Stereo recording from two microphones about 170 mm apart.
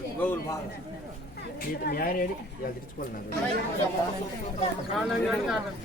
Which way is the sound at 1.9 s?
60° left (ahead or behind).